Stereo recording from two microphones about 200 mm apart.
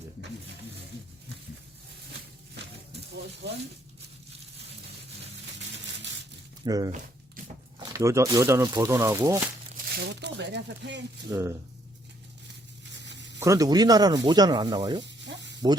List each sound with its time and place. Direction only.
6.7 s speech: 20° right (ahead or behind)
9.7 s speech: 55° right (ahead or behind)
11.3 s speech: 15° right (ahead or behind)
12.9 s a sound: 60° right (ahead or behind)
13.4 s speech: 15° right (ahead or behind)
15.0 s spray: 60° right (ahead or behind)